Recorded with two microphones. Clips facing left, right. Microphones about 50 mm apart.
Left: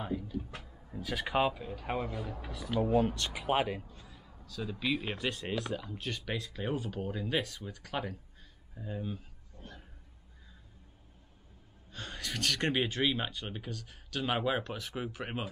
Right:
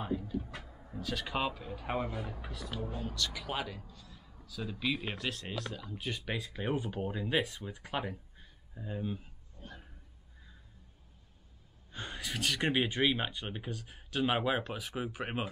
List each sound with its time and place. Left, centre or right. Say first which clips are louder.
0.0 s a sound: right 1 dB; centre
0.7 s vehicle: right 2 dB; centre
0.9 s speech: left 4 dB; centre
2.8 s speech: left 14 dB; left
3.1 s speech: left 5 dB; left
4.5 s speech: left 1 dB; centre
6.0 s speech: right 2 dB; centre
8.7 s a sound: right 1 dB; centre
11.9 s speech: even; centre